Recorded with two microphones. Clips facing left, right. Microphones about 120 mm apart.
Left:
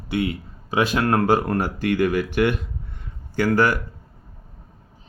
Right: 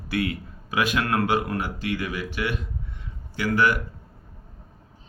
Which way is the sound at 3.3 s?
45° left (ahead or behind).